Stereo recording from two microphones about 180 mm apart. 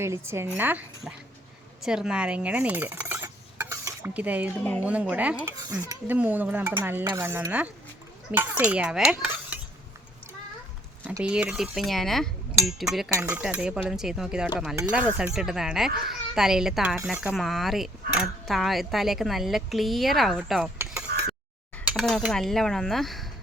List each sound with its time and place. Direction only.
0.0 s a woman's voice: 15° right (ahead or behind)
1.8 s dishes: 5° right (ahead or behind)
4.8 s a woman's voice: 5° right (ahead or behind)
11.0 s a child's voice: 10° right (ahead or behind)
13.1 s a woman's voice: 15° right (ahead or behind)
21.1 s a sound: 55° right (ahead or behind)
21.8 s a child's voice: centre (ahead or behind)